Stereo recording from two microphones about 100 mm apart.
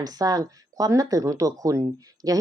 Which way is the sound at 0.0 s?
40° right (ahead or behind).